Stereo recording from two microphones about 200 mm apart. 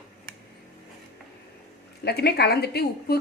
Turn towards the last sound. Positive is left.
turn(degrees=50)  # may be behind; listen again after turning